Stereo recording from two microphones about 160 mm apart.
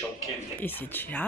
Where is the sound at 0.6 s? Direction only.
10° left (ahead or behind).